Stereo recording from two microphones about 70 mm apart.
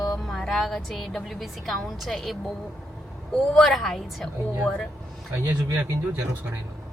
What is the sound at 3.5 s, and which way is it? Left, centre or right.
Speech, centre.